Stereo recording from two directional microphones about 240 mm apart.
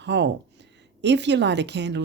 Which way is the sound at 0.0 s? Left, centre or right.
Right.